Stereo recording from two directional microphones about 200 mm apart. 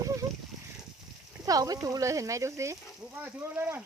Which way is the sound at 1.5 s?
20° right (ahead or behind).